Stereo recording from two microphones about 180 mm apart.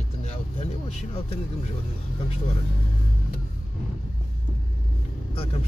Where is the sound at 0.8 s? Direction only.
35° left (ahead or behind).